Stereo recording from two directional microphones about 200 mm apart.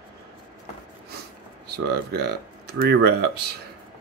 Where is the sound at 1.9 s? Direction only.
55° right (ahead or behind).